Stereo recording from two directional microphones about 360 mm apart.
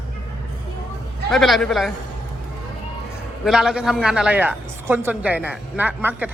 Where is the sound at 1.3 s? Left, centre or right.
Centre.